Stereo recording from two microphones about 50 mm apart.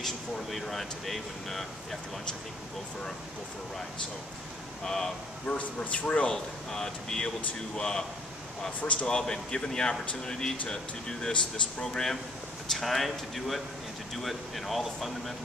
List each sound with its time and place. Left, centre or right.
0.0 s speech: centre
4.8 s speech: centre
5.8 s speech: left
6.3 s speech: centre